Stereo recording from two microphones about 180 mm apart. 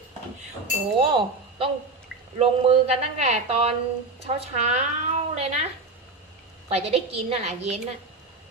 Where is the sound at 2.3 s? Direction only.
35° right (ahead or behind).